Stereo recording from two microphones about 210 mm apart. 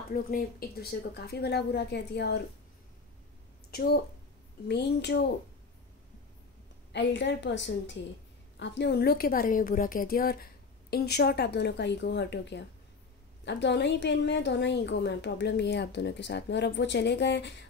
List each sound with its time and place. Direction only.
0.1 s a woman's voice: 45° left (ahead or behind)
3.7 s a woman's voice: 45° left (ahead or behind)
6.9 s a woman's voice: 60° left (ahead or behind)